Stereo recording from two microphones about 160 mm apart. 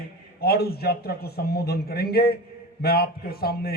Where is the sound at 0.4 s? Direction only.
75° left (ahead or behind).